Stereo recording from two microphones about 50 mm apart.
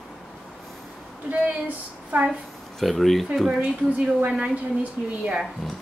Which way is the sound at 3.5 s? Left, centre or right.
Right.